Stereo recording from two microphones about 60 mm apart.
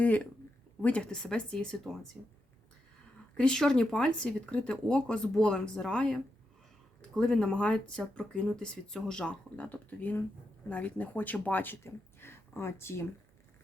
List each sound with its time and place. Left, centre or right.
0.8 s speech: left; by 2.0 s centre
3.3 s speech: centre
7.2 s speech: centre
9.6 s speech: left
11.8 s speech: left